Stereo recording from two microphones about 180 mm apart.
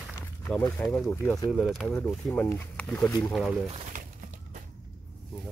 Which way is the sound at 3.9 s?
45° right (ahead or behind).